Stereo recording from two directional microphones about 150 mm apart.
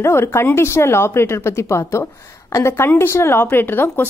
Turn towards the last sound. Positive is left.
turn(degrees=15)  # may be behind; listen again after turning